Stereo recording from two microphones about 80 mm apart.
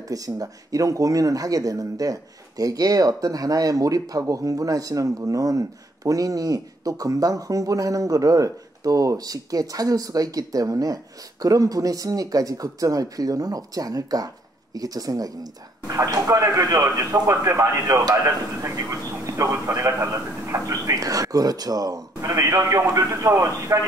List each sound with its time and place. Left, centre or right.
0.1 s a man's voice: right